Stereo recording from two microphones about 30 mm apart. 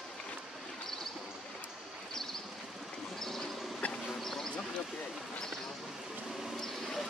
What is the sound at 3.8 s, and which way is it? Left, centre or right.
Bee, left.